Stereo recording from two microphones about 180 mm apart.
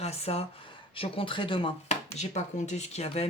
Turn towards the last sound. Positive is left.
turn(degrees=35)  # may be behind; listen again after turning